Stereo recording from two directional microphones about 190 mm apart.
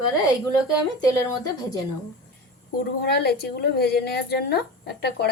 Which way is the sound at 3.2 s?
55° left (ahead or behind).